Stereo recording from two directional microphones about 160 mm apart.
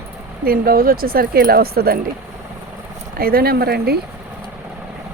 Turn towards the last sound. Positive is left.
turn(degrees=-80)